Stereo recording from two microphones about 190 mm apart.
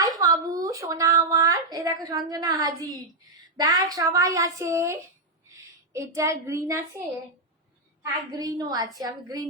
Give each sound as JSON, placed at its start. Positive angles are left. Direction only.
{"t": 0.0, "sound": "a sound", "side_deg": -20}
{"t": 3.6, "sound": "speech", "side_deg": -20}
{"t": 8.3, "sound": "a woman's voice", "side_deg": -20}